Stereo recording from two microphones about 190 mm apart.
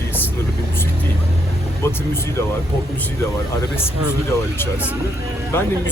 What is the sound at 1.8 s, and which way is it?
Speech, 15° left (ahead or behind).